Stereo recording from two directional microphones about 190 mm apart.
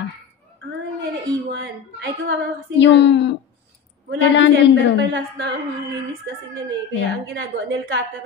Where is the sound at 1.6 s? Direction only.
80° right.